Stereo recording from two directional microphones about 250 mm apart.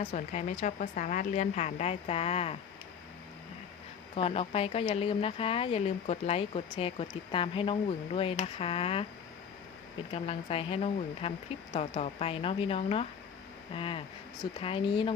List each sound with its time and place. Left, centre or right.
0.0 s a woman's voice: left
4.1 s a woman's voice: left
10.1 s a woman's voice: left